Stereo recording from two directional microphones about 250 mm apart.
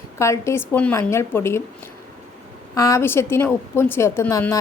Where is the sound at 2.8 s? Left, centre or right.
Centre.